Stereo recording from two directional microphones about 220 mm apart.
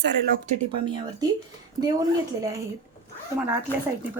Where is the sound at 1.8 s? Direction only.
15° right (ahead or behind).